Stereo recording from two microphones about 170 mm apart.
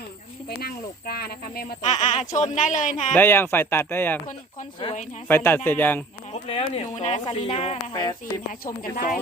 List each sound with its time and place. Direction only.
0.4 s speech: 65° left (ahead or behind)
1.8 s speech: 40° left (ahead or behind)
3.2 s speech: 15° left (ahead or behind)
5.3 s speech: 10° left (ahead or behind)
6.3 s speech: 35° left (ahead or behind)
8.6 s speech: 55° left (ahead or behind)